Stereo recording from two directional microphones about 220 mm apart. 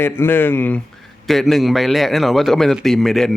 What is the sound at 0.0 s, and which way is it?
Speech, 10° left (ahead or behind).